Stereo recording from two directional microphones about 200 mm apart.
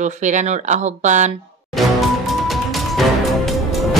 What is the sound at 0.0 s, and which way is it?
Speech, 35° right (ahead or behind).